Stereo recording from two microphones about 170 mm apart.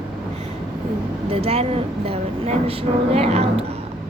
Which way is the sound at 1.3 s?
35° right (ahead or behind).